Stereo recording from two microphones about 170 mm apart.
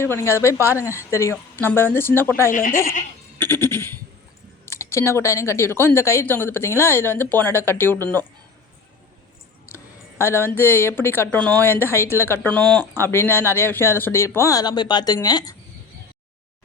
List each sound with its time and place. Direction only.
0.0 s a woman's voice: 15° left (ahead or behind)
2.5 s speech: 50° left (ahead or behind)
3.3 s goat: 15° left (ahead or behind)
4.6 s a woman's voice: 15° left (ahead or behind)
9.7 s a woman's voice: 15° left (ahead or behind)